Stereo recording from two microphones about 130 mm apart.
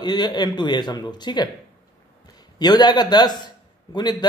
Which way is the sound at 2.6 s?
35° left (ahead or behind).